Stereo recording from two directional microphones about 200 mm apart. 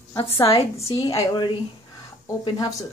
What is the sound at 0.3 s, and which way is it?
A woman's voice, 15° left (ahead or behind).